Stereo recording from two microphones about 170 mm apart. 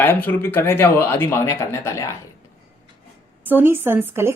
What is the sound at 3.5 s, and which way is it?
Speech, 15° right (ahead or behind).